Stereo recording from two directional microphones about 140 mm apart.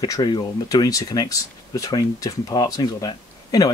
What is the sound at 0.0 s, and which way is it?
Speech, 25° left (ahead or behind).